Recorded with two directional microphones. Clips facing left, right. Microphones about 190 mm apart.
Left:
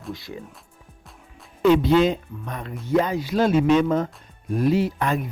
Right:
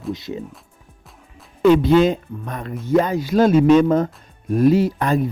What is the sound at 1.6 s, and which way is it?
Speech, 50° right (ahead or behind).